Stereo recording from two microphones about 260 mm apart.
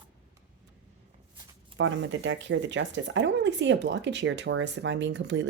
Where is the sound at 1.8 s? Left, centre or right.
Right.